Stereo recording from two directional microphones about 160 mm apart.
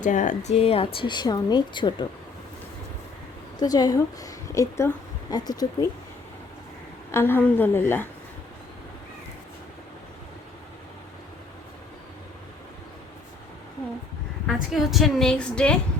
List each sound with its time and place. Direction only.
0.0 s speech: 50° left (ahead or behind); by 2.0 s 30° left (ahead or behind)
3.6 s a woman's voice: 25° left (ahead or behind)
7.1 s a woman's voice: 15° left (ahead or behind)
14.4 s a woman's voice: centre (ahead or behind)